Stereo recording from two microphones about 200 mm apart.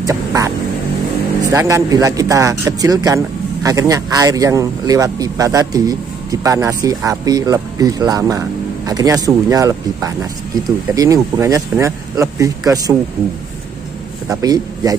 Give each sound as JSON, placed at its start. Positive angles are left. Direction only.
{"t": 0.0, "sound": "a sound", "side_deg": -15}
{"t": 1.5, "sound": "speech", "side_deg": -15}
{"t": 14.4, "sound": "speech", "side_deg": -15}